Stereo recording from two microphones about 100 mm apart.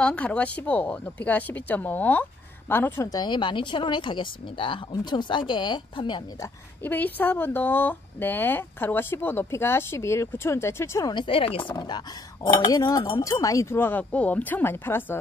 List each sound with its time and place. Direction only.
0.0 s speech: 10° left (ahead or behind)
3.0 s speech: 35° left (ahead or behind)
3.3 s speech: 55° left (ahead or behind)
6.8 s speech: 15° left (ahead or behind)
11.1 s speech: 55° left (ahead or behind)
12.5 s speech: 40° left (ahead or behind); by 15.1 s 20° left (ahead or behind)